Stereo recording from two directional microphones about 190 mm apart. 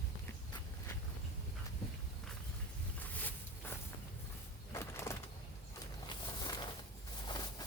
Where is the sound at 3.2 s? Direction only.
10° left (ahead or behind).